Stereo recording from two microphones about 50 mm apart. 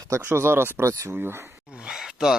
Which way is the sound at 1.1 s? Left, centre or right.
Right.